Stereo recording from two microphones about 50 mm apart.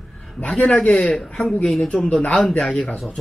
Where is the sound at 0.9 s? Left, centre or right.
Centre.